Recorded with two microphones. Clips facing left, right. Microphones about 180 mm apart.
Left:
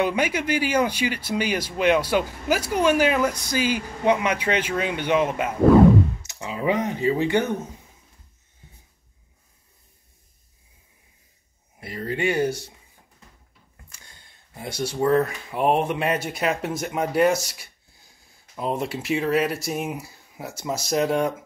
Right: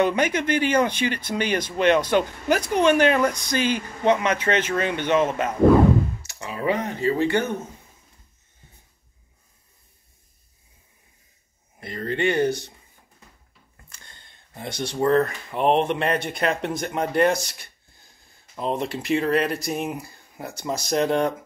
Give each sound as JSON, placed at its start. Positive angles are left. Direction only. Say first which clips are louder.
{"t": 0.0, "sound": "speech", "louder": "right 2 dB", "side_deg": 10}
{"t": 11.8, "sound": "speech", "louder": "right 1 dB", "side_deg": 10}
{"t": 13.8, "sound": "speech", "louder": "right 3 dB", "side_deg": 10}